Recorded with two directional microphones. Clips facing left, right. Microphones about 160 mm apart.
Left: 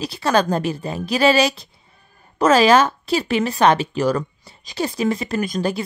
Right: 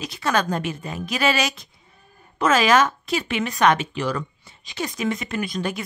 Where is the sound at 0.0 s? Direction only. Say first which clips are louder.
Left 5 dB; 35° left (ahead or behind).